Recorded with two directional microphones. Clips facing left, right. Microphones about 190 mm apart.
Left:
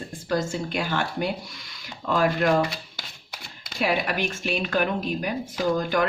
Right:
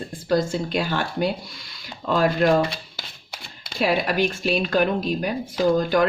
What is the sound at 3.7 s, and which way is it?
A woman's voice, 35° right (ahead or behind).